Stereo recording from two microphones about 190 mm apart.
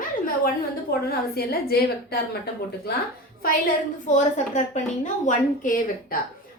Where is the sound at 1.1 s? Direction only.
55° left (ahead or behind).